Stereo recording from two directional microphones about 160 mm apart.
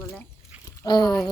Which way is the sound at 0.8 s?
25° left (ahead or behind).